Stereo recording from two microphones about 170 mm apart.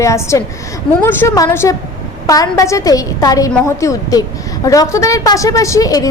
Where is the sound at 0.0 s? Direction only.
20° left (ahead or behind).